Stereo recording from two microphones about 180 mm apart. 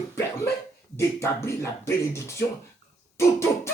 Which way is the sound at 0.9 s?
15° left (ahead or behind).